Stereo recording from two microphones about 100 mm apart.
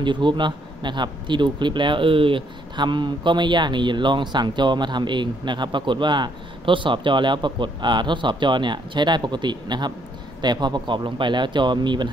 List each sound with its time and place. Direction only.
0.0 s speech: 50° right (ahead or behind)